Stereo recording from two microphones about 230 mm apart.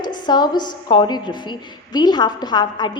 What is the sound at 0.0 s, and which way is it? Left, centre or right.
A woman's voice, centre.